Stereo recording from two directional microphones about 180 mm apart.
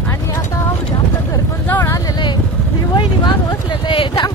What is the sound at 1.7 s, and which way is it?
Speech, 20° left (ahead or behind).